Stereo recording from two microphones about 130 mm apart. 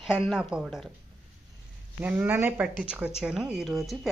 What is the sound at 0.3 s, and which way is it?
Speech, 10° right (ahead or behind).